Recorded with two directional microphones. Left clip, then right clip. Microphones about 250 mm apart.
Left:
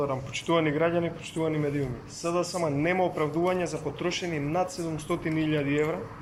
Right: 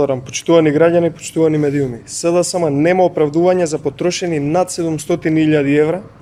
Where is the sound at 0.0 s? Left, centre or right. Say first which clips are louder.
Right 13 dB; right.